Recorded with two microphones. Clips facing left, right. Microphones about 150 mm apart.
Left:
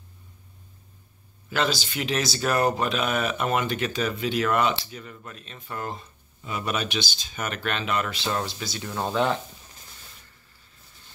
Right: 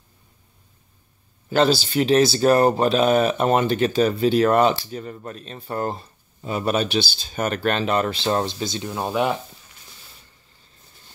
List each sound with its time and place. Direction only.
1.5 s speech: 30° right (ahead or behind); by 9.4 s 15° right (ahead or behind)